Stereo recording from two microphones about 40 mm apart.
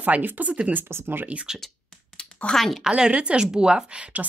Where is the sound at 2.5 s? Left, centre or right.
Centre.